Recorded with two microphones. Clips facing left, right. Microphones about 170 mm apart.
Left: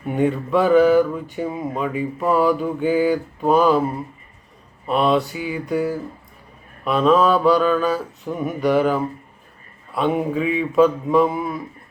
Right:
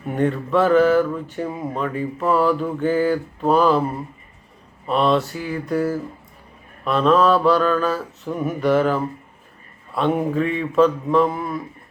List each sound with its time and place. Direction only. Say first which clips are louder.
0.1 s speech: left 1 dB; 5° left (ahead or behind)